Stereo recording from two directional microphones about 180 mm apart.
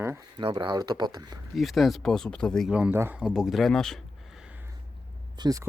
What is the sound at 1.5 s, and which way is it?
Speech, centre (ahead or behind).